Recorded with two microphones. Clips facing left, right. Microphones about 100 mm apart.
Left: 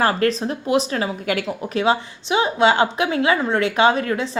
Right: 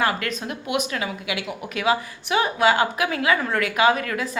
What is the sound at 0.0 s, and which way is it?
Speech, 35° left (ahead or behind).